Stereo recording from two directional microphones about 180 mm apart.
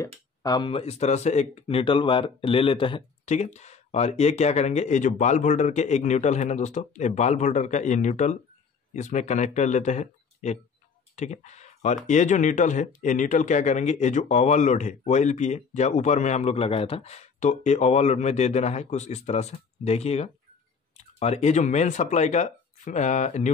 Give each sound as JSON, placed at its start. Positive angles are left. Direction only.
{"t": 0.4, "sound": "speech", "side_deg": 25}